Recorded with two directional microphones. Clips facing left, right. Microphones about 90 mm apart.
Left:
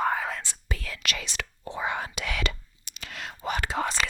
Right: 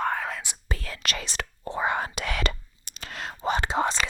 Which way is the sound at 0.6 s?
35° right (ahead or behind).